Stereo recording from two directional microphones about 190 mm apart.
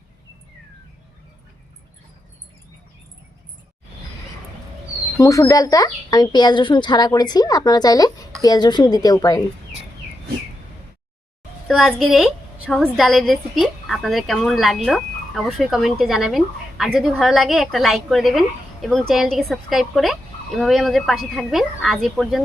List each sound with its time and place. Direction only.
5.1 s speech: 15° left (ahead or behind)
11.7 s a woman's voice: centre (ahead or behind)